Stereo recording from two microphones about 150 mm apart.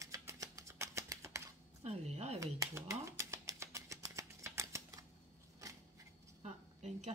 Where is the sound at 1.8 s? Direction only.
45° right (ahead or behind).